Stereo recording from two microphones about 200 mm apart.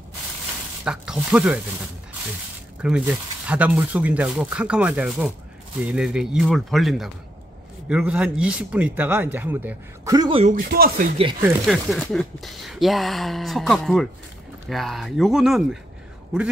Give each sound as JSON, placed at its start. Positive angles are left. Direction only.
{"t": 0.8, "sound": "speech", "side_deg": -5}
{"t": 2.8, "sound": "speech", "side_deg": -5}
{"t": 10.5, "sound": "speech", "side_deg": -45}
{"t": 11.6, "sound": "speech", "side_deg": 0}